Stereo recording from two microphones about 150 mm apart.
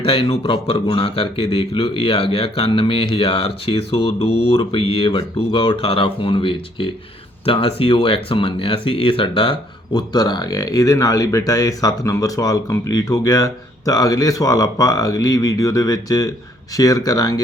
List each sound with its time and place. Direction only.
0.0 s speech: 40° left (ahead or behind)